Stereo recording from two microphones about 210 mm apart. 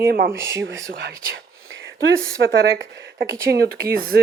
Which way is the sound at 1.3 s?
65° right (ahead or behind).